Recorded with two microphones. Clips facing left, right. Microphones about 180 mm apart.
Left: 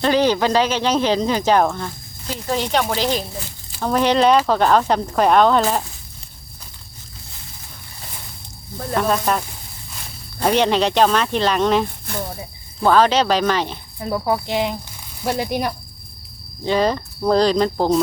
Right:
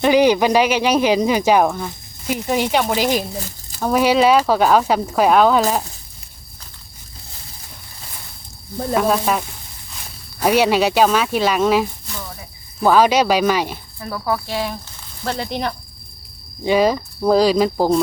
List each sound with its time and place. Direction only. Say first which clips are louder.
0.0 s speech: right 3 dB; 10° right (ahead or behind)
3.3 s a sound: right 3 dB; 40° right (ahead or behind)
3.8 s speech: right 2 dB; 10° right (ahead or behind)
9.0 s speech: right 1 dB; 5° right (ahead or behind)
10.4 s speech: right 2 dB; 10° right (ahead or behind)
12.0 s speech: left 6 dB; 55° left (ahead or behind)
12.8 s speech: right 1 dB; 10° right (ahead or behind)
14.0 s speech: left 2 dB; 20° left (ahead or behind)
16.6 s speech: right 3 dB; 10° right (ahead or behind)